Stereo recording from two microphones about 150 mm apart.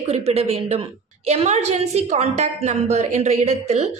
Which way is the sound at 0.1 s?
45° right (ahead or behind).